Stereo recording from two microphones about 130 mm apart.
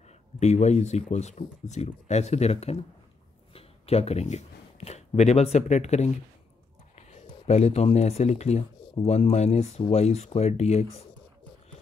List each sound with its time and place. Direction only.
0.4 s speech: 60° left (ahead or behind)
7.0 s a sound: 60° left (ahead or behind)
7.4 s speech: 55° left (ahead or behind)